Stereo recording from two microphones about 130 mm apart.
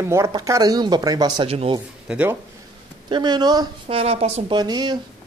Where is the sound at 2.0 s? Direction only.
10° right (ahead or behind).